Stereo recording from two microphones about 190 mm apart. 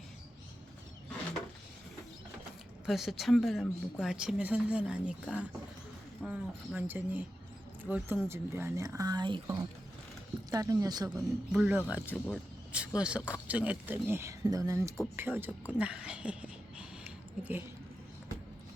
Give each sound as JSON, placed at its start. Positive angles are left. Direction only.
{"t": 2.8, "sound": "a woman's voice", "side_deg": 0}
{"t": 11.1, "sound": "speech", "side_deg": -5}